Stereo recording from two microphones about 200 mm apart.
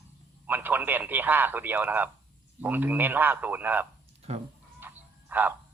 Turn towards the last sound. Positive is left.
turn(degrees=-10)  # may be behind; listen again after turning